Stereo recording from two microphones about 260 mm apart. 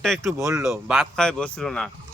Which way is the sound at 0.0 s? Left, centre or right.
Centre.